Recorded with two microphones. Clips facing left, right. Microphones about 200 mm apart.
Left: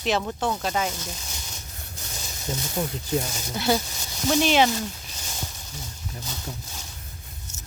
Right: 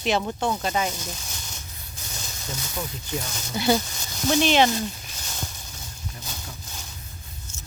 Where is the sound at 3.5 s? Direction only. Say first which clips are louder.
Right 2 dB; centre (ahead or behind).